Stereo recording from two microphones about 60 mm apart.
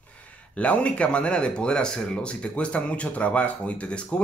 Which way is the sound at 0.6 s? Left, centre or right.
Left.